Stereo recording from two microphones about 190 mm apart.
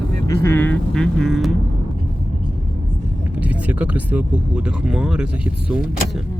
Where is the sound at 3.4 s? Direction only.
5° right (ahead or behind).